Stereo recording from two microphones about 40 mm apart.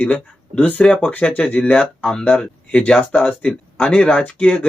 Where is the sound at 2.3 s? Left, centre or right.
Left.